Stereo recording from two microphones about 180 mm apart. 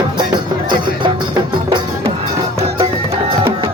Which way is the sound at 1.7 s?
25° right (ahead or behind).